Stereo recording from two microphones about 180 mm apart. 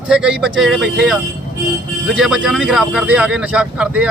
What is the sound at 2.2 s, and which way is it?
Speech, 5° right (ahead or behind).